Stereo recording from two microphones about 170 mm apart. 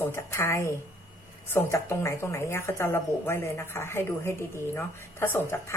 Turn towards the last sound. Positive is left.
turn(degrees=15)  # may be behind; listen again after turning